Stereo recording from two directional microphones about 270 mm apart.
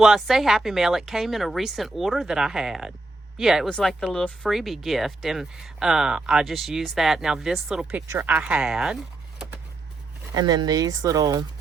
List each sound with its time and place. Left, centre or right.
0.0 s speech: centre
10.3 s speech: centre